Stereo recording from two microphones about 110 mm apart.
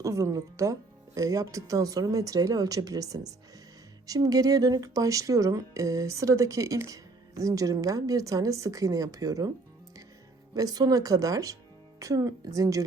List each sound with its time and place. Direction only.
0.0 s speech: 30° right (ahead or behind)
10.5 s speech: 35° right (ahead or behind)